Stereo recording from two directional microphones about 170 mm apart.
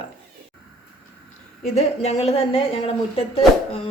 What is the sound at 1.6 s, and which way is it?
A woman's voice, 40° left (ahead or behind).